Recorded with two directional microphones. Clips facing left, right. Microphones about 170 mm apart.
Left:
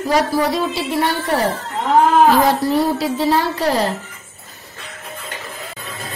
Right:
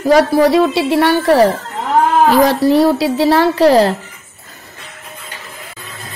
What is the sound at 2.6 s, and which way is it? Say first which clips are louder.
Speech: right 6 dB; 80° right.